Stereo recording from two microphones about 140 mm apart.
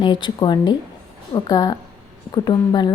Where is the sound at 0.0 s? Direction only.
35° left (ahead or behind).